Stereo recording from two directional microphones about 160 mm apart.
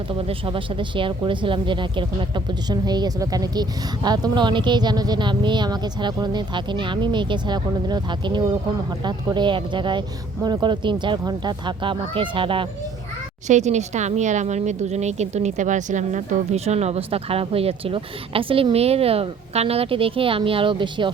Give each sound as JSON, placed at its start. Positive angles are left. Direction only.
{"t": 0.1, "sound": "a woman's voice", "side_deg": -35}
{"t": 13.5, "sound": "a woman's voice", "side_deg": -45}